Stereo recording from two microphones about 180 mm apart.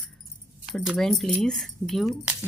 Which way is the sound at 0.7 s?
Centre (ahead or behind).